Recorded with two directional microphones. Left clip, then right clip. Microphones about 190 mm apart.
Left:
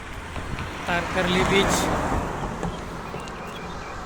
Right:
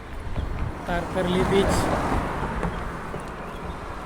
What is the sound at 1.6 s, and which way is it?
Speech, 40° left (ahead or behind).